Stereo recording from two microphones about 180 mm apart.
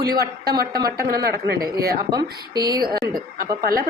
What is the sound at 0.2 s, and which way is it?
A woman's voice, 55° right (ahead or behind).